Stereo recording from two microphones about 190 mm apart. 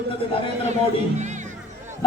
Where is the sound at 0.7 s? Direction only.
40° right (ahead or behind).